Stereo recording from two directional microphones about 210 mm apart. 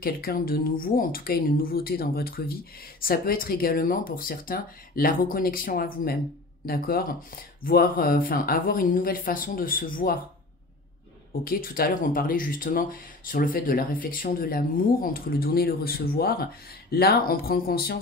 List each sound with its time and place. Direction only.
0.0 s speech: 45° left (ahead or behind)
11.4 s speech: 45° left (ahead or behind)